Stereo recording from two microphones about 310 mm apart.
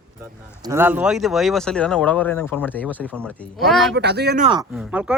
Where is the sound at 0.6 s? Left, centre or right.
Centre.